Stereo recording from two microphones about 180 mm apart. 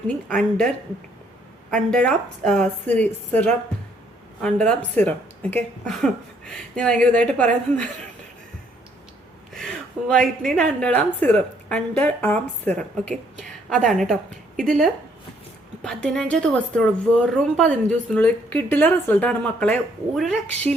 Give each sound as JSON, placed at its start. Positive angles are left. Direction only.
{"t": 0.3, "sound": "speech", "side_deg": 5}
{"t": 1.7, "sound": "speech", "side_deg": 5}
{"t": 9.6, "sound": "a woman's voice", "side_deg": 5}